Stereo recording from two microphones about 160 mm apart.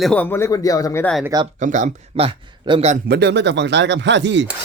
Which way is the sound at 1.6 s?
50° right (ahead or behind).